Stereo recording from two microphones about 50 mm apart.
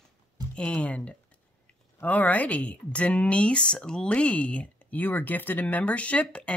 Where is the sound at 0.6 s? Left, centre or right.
Left.